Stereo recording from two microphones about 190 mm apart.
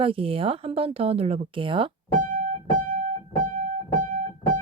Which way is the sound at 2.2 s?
45° right (ahead or behind).